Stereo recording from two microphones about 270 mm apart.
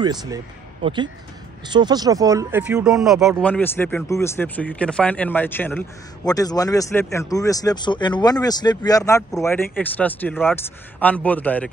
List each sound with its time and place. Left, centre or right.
0.0 s speech: centre